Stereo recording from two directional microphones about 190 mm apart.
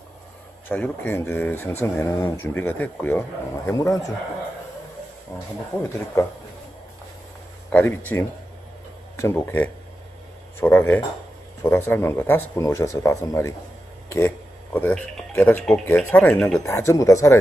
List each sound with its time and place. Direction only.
0.7 s speech: 10° left (ahead or behind)
6.2 s speech: 15° left (ahead or behind)
7.7 s speech: 10° left (ahead or behind)